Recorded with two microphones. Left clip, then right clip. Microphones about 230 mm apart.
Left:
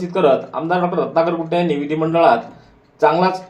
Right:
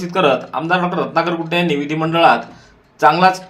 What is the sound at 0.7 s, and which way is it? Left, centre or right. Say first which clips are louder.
A man's voice: right 1 dB; right.